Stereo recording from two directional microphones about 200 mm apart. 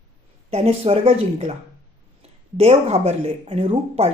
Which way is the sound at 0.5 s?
30° right (ahead or behind).